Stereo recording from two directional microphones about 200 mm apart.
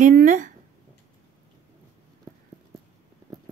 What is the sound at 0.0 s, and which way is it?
Speech, 40° right (ahead or behind).